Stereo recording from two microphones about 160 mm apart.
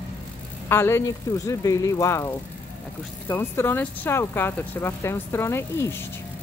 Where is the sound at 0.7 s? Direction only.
15° left (ahead or behind).